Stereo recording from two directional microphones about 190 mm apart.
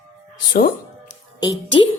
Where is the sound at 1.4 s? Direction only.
20° left (ahead or behind).